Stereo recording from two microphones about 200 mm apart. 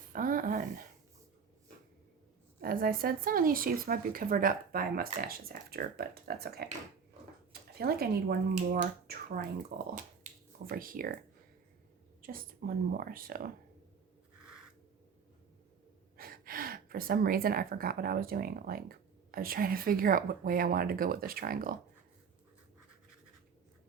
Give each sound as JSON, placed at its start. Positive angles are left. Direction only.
{"t": 0.1, "sound": "speech", "side_deg": -45}
{"t": 2.6, "sound": "speech", "side_deg": -45}
{"t": 7.8, "sound": "speech", "side_deg": -50}
{"t": 10.3, "sound": "finger snapping", "side_deg": -40}
{"t": 10.7, "sound": "speech", "side_deg": -45}
{"t": 12.2, "sound": "speech", "side_deg": -45}
{"t": 16.1, "sound": "speech", "side_deg": -45}